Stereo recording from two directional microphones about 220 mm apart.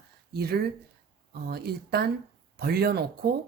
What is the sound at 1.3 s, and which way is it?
Speech, 45° right (ahead or behind).